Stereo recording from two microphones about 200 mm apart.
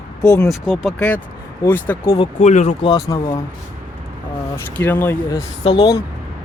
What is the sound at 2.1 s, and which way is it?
Speech, 35° left (ahead or behind).